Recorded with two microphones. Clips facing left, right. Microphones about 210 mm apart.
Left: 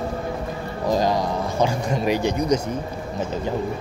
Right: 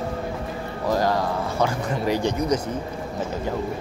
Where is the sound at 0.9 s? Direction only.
15° left (ahead or behind).